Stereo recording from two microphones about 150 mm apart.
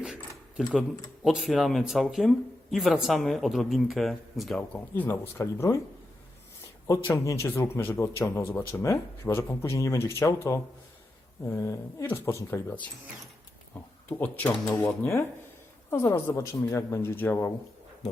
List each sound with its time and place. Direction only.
0.0 s speech: 5° right (ahead or behind); by 5.8 s 20° left (ahead or behind)
7.3 s speech: 15° left (ahead or behind)
13.7 s a sound: 10° left (ahead or behind)
14.1 s speech: 10° left (ahead or behind)
14.6 s speech: 20° left (ahead or behind)